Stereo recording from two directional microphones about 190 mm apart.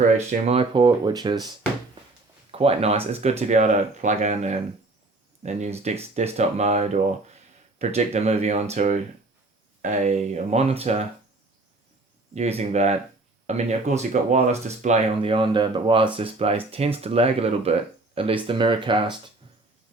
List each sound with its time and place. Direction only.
0.3 s speech: 35° right (ahead or behind)
12.3 s speech: 35° right (ahead or behind)